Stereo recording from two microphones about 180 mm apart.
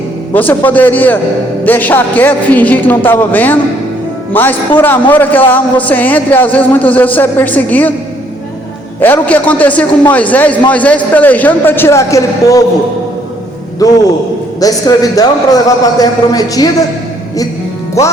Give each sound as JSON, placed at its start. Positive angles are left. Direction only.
{"t": 0.3, "sound": "a man's voice", "side_deg": 10}
{"t": 9.0, "sound": "a man's voice", "side_deg": 10}
{"t": 14.6, "sound": "a man's voice", "side_deg": 20}